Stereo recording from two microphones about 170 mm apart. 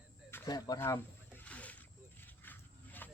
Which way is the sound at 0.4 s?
25° left (ahead or behind).